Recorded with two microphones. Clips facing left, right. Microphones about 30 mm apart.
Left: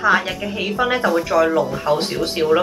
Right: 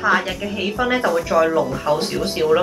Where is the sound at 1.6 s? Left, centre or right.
Left.